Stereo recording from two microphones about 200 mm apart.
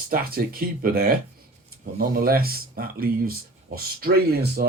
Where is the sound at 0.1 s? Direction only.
45° right (ahead or behind).